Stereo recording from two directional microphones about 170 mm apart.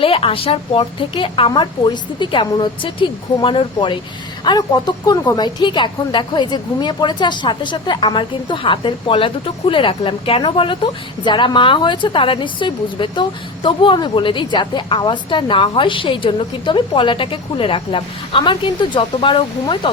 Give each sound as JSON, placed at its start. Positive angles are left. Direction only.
{"t": 0.0, "sound": "a woman's voice", "side_deg": 30}